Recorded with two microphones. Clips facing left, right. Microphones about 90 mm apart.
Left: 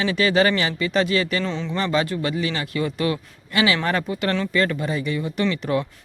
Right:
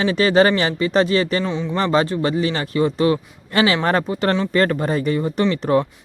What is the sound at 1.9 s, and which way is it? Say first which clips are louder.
Speech: right 5 dB; 30° right (ahead or behind).